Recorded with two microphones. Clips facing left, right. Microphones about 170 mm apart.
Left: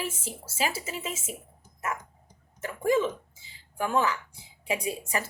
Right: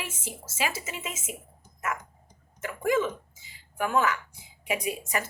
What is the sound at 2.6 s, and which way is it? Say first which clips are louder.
A woman's voice: left 1 dB; 30° left (ahead or behind).